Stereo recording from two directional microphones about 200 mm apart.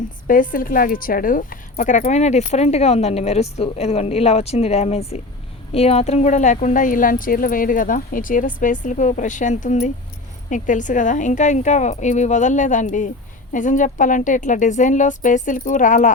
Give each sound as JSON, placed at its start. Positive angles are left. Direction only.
{"t": 0.3, "sound": "speech", "side_deg": 45}